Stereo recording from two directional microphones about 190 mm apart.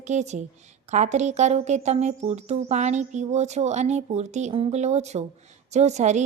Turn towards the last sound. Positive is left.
turn(degrees=-35)  # may be behind; listen again after turning